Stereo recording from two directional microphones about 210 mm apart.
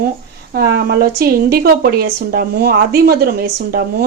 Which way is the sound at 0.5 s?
45° right (ahead or behind).